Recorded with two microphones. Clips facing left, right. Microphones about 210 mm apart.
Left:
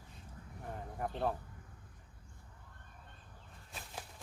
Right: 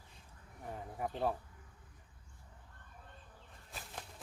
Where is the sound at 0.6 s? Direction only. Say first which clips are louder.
Even; centre (ahead or behind).